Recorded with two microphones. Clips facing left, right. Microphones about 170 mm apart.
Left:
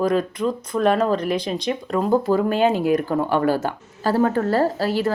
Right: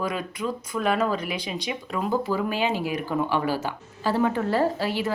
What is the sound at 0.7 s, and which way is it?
Speech, 5° right (ahead or behind).